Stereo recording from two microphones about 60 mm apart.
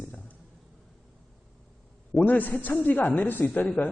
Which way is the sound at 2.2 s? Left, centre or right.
Left.